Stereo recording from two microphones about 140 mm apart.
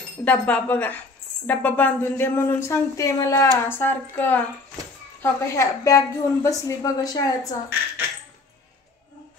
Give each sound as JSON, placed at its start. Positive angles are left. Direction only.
{"t": 0.2, "sound": "a woman's voice", "side_deg": 10}